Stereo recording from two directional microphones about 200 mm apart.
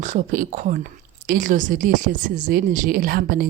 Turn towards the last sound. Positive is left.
turn(degrees=-45)  # may be behind; listen again after turning